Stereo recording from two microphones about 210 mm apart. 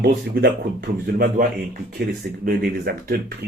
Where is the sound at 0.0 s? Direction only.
50° right (ahead or behind).